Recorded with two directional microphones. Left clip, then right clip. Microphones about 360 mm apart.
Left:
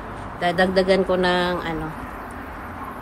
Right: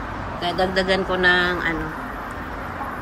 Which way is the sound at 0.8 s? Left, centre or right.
Centre.